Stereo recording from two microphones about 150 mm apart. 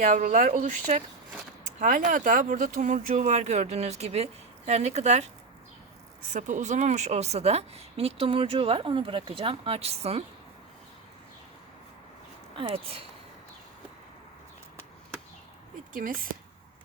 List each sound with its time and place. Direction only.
0.0 s speech: 55° right (ahead or behind)
2.0 s speech: 65° right (ahead or behind)
6.3 s speech: 55° right (ahead or behind)
12.5 s speech: 35° right (ahead or behind)
15.9 s speech: 65° right (ahead or behind)